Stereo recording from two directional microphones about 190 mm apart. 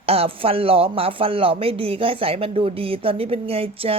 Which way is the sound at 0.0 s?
30° right (ahead or behind).